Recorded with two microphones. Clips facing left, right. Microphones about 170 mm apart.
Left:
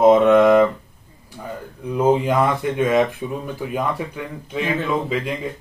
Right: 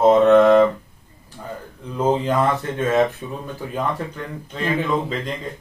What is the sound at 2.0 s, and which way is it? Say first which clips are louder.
Speech: left 2 dB; 10° left (ahead or behind).